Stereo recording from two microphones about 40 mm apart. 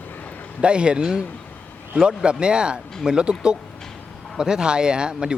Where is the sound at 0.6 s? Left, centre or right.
Right.